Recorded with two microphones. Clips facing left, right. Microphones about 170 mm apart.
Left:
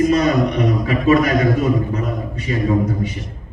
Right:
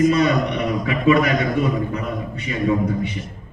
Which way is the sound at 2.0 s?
40° left (ahead or behind).